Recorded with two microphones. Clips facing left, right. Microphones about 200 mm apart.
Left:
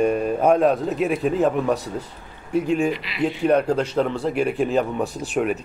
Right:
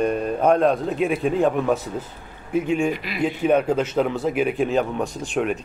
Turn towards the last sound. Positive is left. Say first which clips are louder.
# left 1 dB
turn(degrees=5)  # may be behind; listen again after turning